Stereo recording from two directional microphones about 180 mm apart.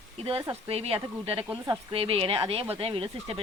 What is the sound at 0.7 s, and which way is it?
A woman's voice, 35° right (ahead or behind).